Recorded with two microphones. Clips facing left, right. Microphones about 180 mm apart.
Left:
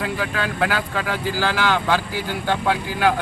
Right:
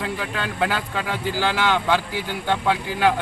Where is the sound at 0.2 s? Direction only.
25° right (ahead or behind).